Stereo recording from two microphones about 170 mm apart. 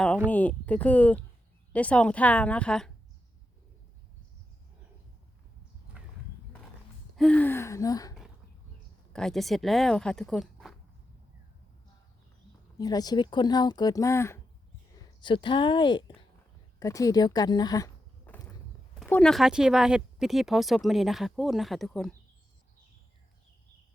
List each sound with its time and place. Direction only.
0.3 s a woman's voice: 10° left (ahead or behind)
7.2 s a woman's voice: 10° left (ahead or behind)
9.1 s speech: centre (ahead or behind)
12.8 s speech: 20° left (ahead or behind)
15.2 s speech: 30° left (ahead or behind)
18.3 s walk: 10° left (ahead or behind)
19.0 s speech: 5° left (ahead or behind)